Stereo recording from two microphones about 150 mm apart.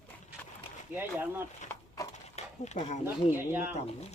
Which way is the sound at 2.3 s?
50° left (ahead or behind).